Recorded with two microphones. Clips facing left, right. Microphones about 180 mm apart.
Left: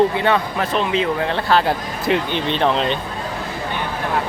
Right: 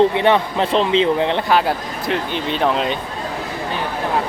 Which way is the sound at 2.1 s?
5° right (ahead or behind).